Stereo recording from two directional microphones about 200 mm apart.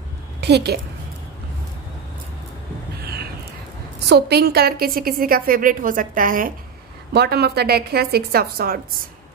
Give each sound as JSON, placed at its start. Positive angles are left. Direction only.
{"t": 0.4, "sound": "a woman's voice", "side_deg": -55}
{"t": 4.1, "sound": "a woman's voice", "side_deg": -55}